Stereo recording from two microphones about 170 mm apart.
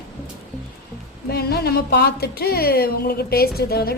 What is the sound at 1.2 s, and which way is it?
A woman's voice, 65° left (ahead or behind).